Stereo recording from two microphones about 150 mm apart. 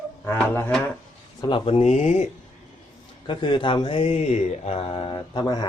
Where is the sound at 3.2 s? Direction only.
30° left (ahead or behind).